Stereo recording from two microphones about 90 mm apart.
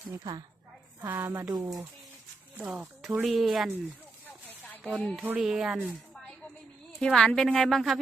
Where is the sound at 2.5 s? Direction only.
15° right (ahead or behind).